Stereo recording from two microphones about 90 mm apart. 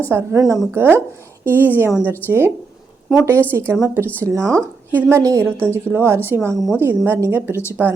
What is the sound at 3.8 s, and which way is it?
A woman's voice, 30° right (ahead or behind).